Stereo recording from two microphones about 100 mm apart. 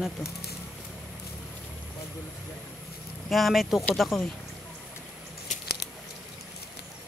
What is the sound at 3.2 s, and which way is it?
Speech, centre (ahead or behind).